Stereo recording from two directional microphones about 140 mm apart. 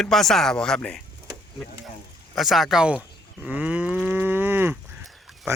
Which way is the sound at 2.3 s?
Centre (ahead or behind).